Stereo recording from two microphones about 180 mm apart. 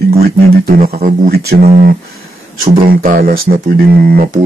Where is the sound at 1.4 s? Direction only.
60° right (ahead or behind).